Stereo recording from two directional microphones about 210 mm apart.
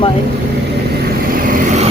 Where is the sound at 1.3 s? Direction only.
40° right (ahead or behind).